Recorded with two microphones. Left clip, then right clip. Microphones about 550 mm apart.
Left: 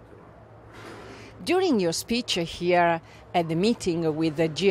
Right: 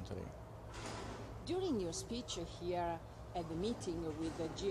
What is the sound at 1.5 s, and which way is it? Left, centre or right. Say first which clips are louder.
Speech: left 16 dB; left.